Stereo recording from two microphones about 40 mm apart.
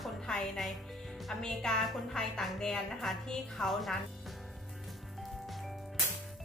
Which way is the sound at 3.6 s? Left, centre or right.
Centre.